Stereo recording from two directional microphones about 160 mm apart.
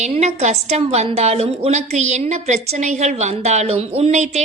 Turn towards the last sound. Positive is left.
turn(degrees=-45)  # may be behind; listen again after turning